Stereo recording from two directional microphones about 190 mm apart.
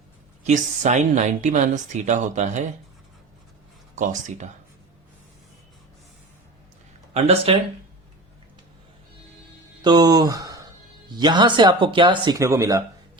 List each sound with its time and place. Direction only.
0.4 s speech: 40° right (ahead or behind)
3.9 s speech: 40° right (ahead or behind)
7.1 s speech: 30° right (ahead or behind)
9.8 s speech: 20° right (ahead or behind)